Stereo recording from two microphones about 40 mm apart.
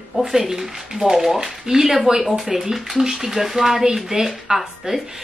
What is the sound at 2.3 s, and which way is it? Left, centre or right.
A woman's voice, centre.